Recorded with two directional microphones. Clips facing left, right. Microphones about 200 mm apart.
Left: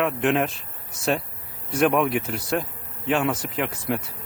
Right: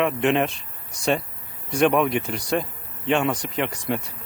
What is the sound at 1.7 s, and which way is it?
A man's voice, centre (ahead or behind).